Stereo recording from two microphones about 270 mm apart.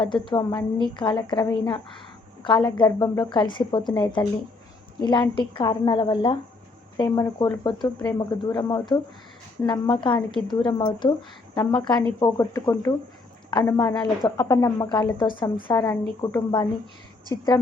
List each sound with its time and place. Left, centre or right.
0.0 s a woman's voice: centre